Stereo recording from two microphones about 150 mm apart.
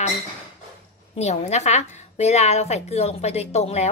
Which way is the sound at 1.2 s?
50° left (ahead or behind).